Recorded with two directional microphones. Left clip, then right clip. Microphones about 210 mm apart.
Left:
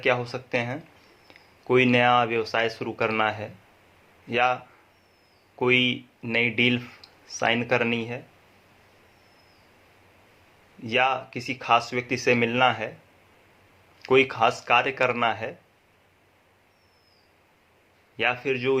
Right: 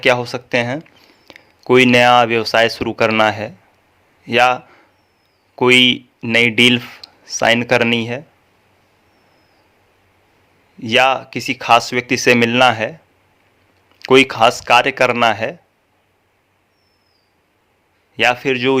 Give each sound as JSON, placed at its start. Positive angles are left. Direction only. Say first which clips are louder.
{"t": 0.0, "sound": "speech", "louder": "right 10 dB", "side_deg": -50}
{"t": 10.8, "sound": "speech", "louder": "right 10 dB", "side_deg": -50}
{"t": 14.0, "sound": "speech", "louder": "right 9 dB", "side_deg": -50}
{"t": 18.2, "sound": "speech", "louder": "right 10 dB", "side_deg": -50}